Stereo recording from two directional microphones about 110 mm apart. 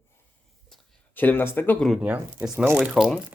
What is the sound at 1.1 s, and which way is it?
Speech, 15° left (ahead or behind).